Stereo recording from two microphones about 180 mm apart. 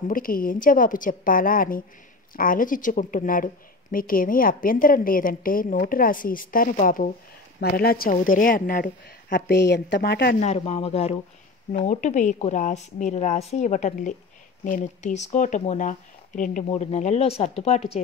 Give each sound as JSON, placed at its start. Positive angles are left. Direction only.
{"t": 0.1, "sound": "a woman's voice", "side_deg": 50}
{"t": 10.4, "sound": "a woman's voice", "side_deg": 40}